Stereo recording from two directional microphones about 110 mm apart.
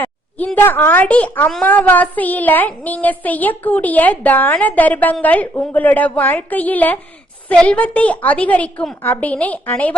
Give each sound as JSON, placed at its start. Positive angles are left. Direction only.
{"t": 0.0, "sound": "speech", "side_deg": 15}
{"t": 1.6, "sound": "child singing", "side_deg": 15}